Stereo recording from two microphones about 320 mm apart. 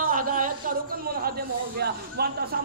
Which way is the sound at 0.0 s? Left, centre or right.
Right.